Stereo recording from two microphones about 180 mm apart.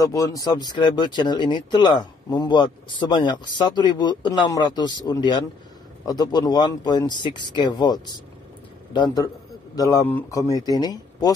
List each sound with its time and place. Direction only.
0.0 s speech: 20° left (ahead or behind)